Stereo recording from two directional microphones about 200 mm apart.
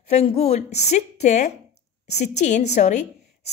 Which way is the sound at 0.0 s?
30° left (ahead or behind).